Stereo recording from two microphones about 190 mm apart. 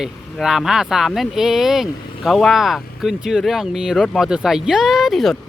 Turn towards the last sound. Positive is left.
turn(degrees=0)  # may be behind; listen again after turning